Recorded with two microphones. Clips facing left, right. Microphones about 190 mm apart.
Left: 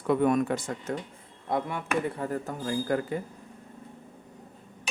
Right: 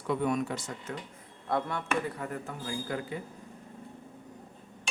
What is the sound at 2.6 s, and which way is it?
Speech, 50° left (ahead or behind).